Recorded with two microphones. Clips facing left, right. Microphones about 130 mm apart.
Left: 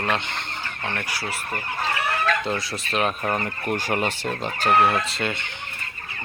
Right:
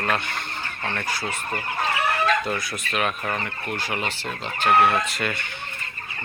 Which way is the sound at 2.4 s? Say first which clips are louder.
Left 1 dB; 30° left (ahead or behind).